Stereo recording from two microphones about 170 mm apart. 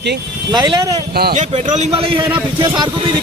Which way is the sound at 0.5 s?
25° right (ahead or behind).